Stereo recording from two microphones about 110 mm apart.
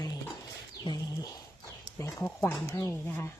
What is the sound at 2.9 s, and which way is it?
Speech, 20° left (ahead or behind).